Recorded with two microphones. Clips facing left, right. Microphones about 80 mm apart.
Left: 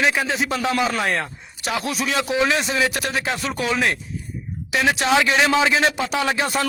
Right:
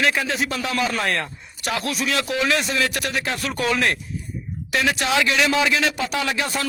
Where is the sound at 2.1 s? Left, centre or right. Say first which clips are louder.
Left 3 dB; centre.